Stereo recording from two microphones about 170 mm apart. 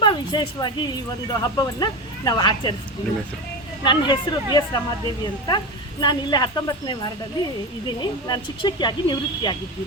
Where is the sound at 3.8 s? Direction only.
25° left (ahead or behind).